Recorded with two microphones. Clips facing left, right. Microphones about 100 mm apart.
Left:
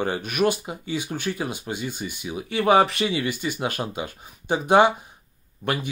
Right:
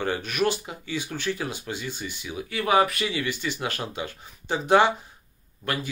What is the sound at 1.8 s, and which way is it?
Speech, 50° left (ahead or behind).